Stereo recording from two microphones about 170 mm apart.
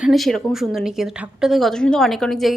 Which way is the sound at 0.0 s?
Centre (ahead or behind).